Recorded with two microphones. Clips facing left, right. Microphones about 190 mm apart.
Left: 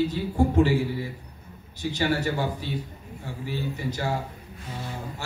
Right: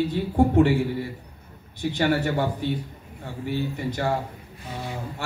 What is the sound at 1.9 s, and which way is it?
A man's voice, 55° right (ahead or behind).